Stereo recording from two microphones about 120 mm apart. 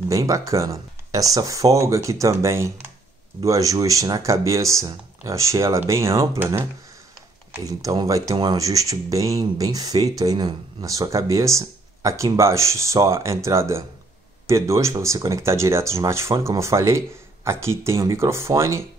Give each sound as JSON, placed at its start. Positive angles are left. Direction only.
{"t": 0.1, "sound": "speech", "side_deg": -25}